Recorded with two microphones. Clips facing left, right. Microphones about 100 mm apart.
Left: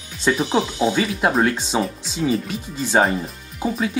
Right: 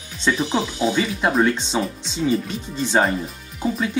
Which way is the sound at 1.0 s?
5° left (ahead or behind).